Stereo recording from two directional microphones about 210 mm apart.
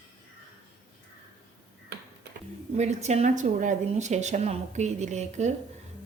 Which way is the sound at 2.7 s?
30° right (ahead or behind).